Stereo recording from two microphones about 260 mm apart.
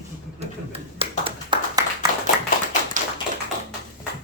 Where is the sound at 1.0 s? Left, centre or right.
Centre.